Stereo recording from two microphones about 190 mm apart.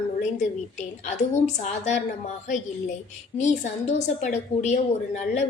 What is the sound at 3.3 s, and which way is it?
A woman's voice, 40° left (ahead or behind).